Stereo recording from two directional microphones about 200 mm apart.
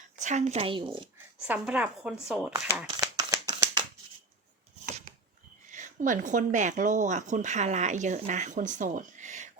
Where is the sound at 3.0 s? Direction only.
20° right (ahead or behind).